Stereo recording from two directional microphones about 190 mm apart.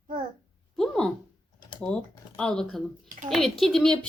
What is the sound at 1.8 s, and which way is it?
A woman's voice, 5° left (ahead or behind).